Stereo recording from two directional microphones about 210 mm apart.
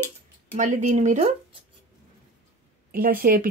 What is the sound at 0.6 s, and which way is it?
Speech, 35° right (ahead or behind).